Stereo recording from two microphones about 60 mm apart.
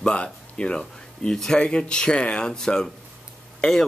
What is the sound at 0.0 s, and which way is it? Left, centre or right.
Speech, centre.